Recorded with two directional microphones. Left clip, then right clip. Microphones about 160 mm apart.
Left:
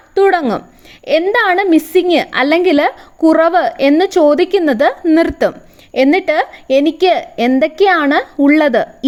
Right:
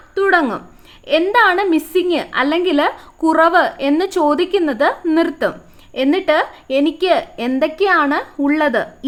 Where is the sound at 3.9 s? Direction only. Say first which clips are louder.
Left 6 dB; 30° left (ahead or behind).